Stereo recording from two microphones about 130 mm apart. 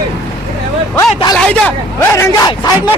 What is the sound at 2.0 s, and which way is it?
Speech, 20° left (ahead or behind).